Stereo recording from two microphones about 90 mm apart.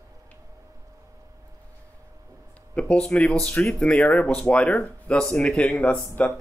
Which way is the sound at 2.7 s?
15° left (ahead or behind).